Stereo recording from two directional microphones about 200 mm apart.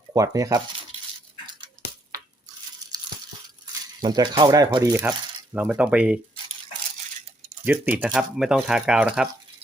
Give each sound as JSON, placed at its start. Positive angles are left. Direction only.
{"t": 0.1, "sound": "speech", "side_deg": -15}
{"t": 4.0, "sound": "speech", "side_deg": -20}
{"t": 7.6, "sound": "speech", "side_deg": -10}